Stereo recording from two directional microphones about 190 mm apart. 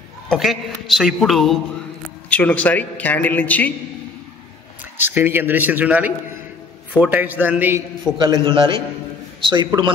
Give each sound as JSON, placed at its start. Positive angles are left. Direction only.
{"t": 0.3, "sound": "a man's voice", "side_deg": 0}
{"t": 4.9, "sound": "speech", "side_deg": -10}
{"t": 8.0, "sound": "a man's voice", "side_deg": -20}